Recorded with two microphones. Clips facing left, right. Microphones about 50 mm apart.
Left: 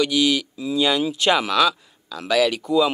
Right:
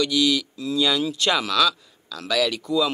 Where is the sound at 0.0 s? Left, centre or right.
Centre.